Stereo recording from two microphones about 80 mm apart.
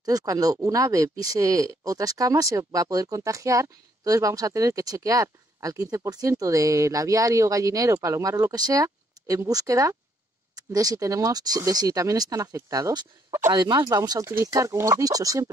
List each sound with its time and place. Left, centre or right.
0.0 s speech: right
13.5 s speech: right
13.7 s speech: right